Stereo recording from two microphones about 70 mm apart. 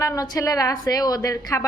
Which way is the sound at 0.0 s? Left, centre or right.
Left.